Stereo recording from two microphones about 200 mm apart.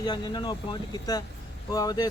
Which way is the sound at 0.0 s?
20° left (ahead or behind).